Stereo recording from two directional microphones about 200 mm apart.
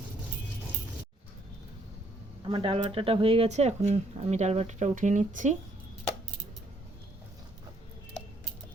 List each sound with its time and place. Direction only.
2.5 s speech: 25° right (ahead or behind)